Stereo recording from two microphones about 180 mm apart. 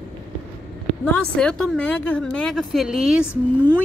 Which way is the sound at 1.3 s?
5° left (ahead or behind).